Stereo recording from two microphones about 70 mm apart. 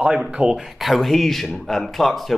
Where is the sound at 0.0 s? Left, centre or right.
Centre.